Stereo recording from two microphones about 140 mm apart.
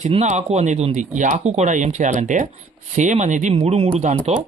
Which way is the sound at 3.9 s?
65° right (ahead or behind).